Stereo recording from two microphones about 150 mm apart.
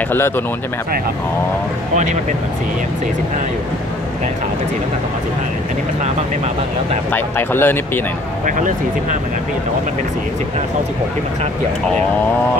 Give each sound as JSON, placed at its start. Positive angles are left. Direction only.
{"t": 7.1, "sound": "speech", "side_deg": 15}
{"t": 8.5, "sound": "speech", "side_deg": -60}